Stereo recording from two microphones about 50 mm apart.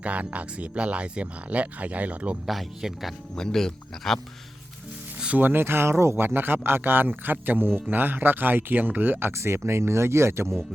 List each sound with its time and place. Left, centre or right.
0.0 s speech: right
2.5 s speech: centre
3.3 s speech: centre
5.4 s speech: right
6.2 s speech: right
9.3 s speech: right